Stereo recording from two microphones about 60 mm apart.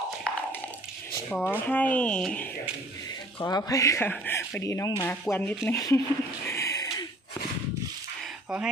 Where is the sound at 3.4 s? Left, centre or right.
Left.